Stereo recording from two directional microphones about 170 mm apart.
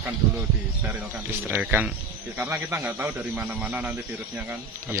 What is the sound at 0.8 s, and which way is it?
A man's voice, 10° right (ahead or behind).